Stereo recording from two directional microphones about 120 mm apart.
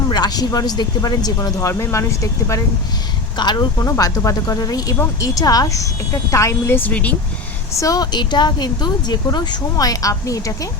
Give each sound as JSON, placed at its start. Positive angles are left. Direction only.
{"t": 0.1, "sound": "speech", "side_deg": 35}
{"t": 3.3, "sound": "speech", "side_deg": 40}
{"t": 7.7, "sound": "speech", "side_deg": 25}